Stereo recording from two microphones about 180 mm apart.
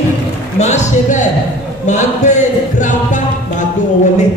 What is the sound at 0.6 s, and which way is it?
A man's voice, 40° left (ahead or behind).